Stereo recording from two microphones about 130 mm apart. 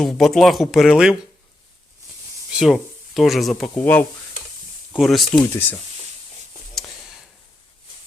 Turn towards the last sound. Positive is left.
turn(degrees=5)  # may be behind; listen again after turning